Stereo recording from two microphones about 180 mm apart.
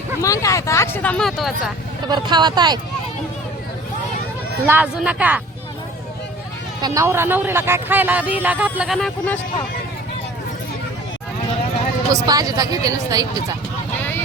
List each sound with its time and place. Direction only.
0.2 s speech: 15° left (ahead or behind); by 1.7 s centre (ahead or behind)
2.0 s speech: 25° right (ahead or behind)
4.6 s speech: 10° right (ahead or behind)
6.8 s speech: 15° right (ahead or behind); by 9.4 s 5° left (ahead or behind)
12.1 s speech: 20° right (ahead or behind)